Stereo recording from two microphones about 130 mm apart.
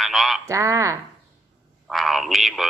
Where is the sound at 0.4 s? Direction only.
25° right (ahead or behind).